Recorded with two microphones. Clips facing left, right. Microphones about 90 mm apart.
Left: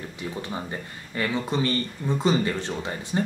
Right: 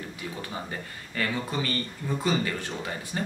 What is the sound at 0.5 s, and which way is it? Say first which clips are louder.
Speech: left 3 dB; 20° left (ahead or behind).